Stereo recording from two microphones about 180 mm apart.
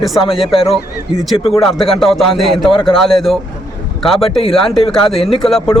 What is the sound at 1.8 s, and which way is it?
Speech, centre (ahead or behind).